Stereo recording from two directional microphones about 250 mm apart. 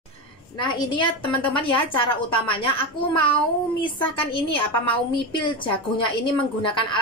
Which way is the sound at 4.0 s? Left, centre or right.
Left.